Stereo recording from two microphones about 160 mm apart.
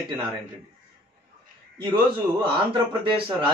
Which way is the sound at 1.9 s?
30° right (ahead or behind).